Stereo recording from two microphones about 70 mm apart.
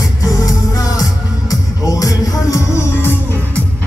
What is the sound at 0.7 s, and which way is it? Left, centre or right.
Music, left.